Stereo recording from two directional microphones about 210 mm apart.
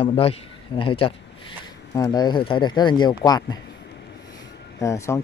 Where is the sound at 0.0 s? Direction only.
25° left (ahead or behind).